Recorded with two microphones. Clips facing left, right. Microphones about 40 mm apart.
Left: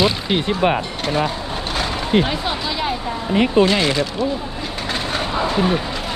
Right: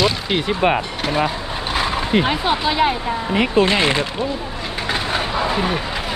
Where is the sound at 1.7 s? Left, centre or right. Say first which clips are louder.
Right 1 dB; centre.